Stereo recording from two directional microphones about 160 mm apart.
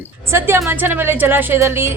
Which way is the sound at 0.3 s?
15° right (ahead or behind).